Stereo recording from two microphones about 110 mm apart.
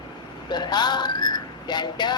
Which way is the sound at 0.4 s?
40° left (ahead or behind).